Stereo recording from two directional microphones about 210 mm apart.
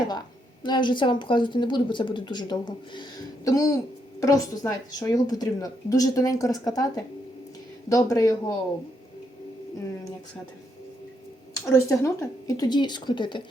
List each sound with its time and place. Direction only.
0.6 s a woman's voice: 20° left (ahead or behind)
11.6 s a woman's voice: 10° left (ahead or behind)